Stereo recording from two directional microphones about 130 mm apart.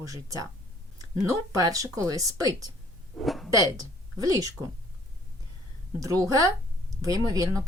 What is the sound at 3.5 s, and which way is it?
Speech, 25° right (ahead or behind).